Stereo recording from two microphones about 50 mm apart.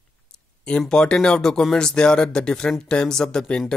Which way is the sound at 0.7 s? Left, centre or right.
Centre.